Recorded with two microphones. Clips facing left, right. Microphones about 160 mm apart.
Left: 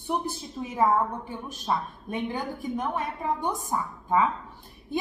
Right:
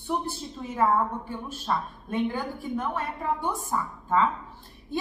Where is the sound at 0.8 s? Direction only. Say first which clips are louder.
Even; 15° left (ahead or behind).